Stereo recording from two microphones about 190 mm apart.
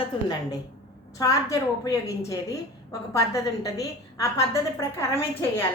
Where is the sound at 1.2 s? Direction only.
15° left (ahead or behind).